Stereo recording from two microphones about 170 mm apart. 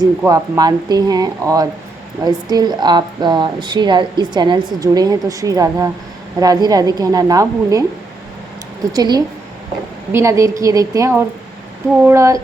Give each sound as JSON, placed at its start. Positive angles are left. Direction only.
{"t": 0.3, "sound": "a woman's voice", "side_deg": -20}
{"t": 8.9, "sound": "a woman's voice", "side_deg": -25}